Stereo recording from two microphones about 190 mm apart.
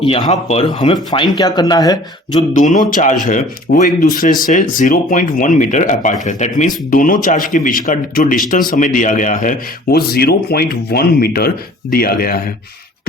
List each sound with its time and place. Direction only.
0.0 s speech: 35° left (ahead or behind)
2.5 s speech: 40° left (ahead or behind)